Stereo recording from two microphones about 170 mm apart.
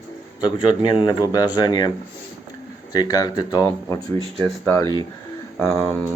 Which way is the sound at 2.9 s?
20° left (ahead or behind).